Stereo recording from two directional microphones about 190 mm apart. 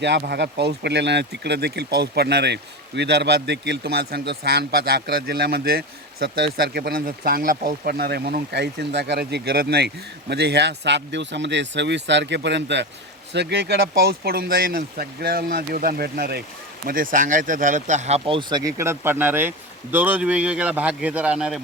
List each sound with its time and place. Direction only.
0.0 s speech: 65° right (ahead or behind); by 21.6 s 5° right (ahead or behind)